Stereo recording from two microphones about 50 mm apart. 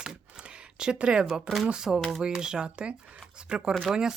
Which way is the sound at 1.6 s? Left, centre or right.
Centre.